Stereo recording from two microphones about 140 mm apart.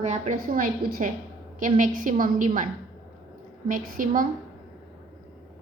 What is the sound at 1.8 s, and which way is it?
Speech, 75° right (ahead or behind).